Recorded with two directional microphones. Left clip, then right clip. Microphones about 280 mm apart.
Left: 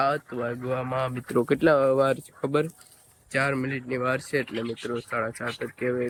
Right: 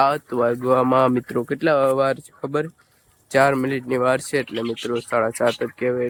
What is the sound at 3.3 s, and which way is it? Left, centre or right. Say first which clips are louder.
Speech: right 9 dB; centre.